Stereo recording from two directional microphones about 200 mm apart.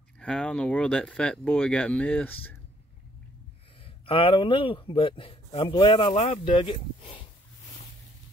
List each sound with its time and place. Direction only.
0.2 s speech: 5° left (ahead or behind)
3.8 s speech: 25° left (ahead or behind)